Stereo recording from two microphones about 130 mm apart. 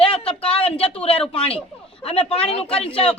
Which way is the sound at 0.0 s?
45° left (ahead or behind).